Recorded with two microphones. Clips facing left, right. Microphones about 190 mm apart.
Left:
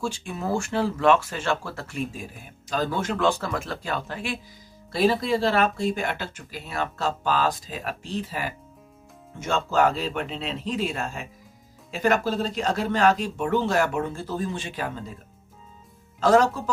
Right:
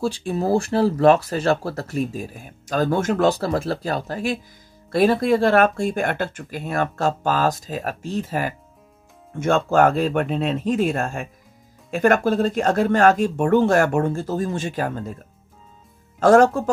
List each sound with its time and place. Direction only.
0.0 s speech: 35° right (ahead or behind)
4.9 s speech: 55° right (ahead or behind)
16.2 s speech: 50° right (ahead or behind)